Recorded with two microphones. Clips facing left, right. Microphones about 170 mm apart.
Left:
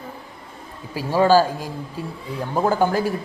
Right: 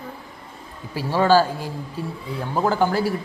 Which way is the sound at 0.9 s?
15° left (ahead or behind).